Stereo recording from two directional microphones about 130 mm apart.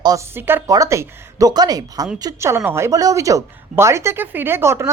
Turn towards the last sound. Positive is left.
turn(degrees=-20)  # may be behind; listen again after turning